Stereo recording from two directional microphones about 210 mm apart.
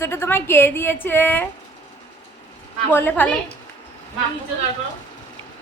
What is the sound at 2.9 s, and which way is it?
Speech, 10° left (ahead or behind).